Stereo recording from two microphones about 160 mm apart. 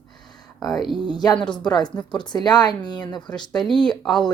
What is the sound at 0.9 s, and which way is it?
Speech, 30° right (ahead or behind).